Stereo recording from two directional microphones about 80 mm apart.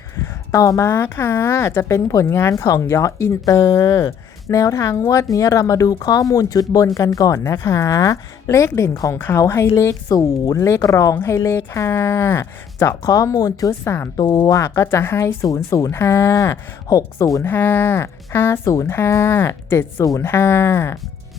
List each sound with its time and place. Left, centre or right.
0.2 s a sound: left
0.9 s speech: left
10.1 s speech: left
14.2 s speech: left
14.5 s speech: left
15.4 s speech: left
17.4 s speech: left